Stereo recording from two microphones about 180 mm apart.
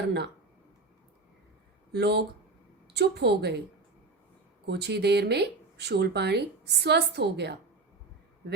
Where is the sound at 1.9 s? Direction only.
65° right (ahead or behind).